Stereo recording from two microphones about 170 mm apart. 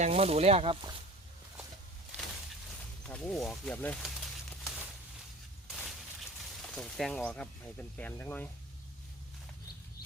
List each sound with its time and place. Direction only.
0.0 s speech: 40° right (ahead or behind)
3.1 s a sound: 5° left (ahead or behind)
6.6 s speech: 5° left (ahead or behind)